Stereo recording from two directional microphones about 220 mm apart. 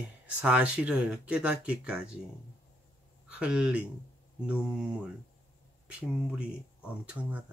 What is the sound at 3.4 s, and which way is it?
Speech, 5° right (ahead or behind).